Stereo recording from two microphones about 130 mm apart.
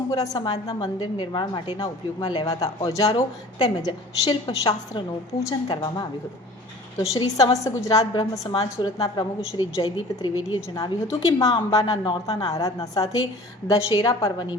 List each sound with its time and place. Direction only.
0.1 s speech: 35° left (ahead or behind)
5.4 s a woman's voice: 25° left (ahead or behind)
7.1 s a woman's voice: 30° left (ahead or behind)